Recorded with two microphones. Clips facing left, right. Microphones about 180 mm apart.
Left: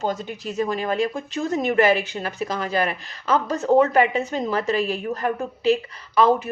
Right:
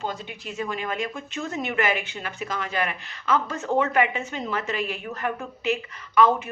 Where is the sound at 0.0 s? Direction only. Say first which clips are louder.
Left 6 dB; 40° left (ahead or behind).